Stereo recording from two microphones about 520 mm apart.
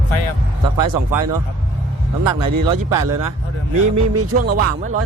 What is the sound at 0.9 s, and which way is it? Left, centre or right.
Speech, right.